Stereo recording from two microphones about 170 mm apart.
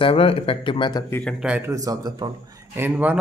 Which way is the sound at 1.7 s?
20° right (ahead or behind).